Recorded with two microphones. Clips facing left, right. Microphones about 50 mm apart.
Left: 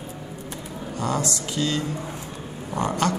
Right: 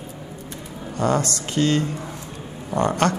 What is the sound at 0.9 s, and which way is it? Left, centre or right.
A man's voice, right.